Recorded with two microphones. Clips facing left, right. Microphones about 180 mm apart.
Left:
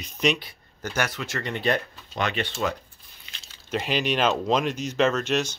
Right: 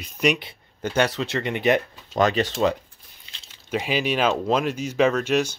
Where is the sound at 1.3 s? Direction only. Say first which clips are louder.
Right 4 dB; 20° right (ahead or behind).